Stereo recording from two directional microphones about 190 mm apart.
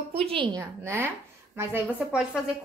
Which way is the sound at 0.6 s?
15° right (ahead or behind).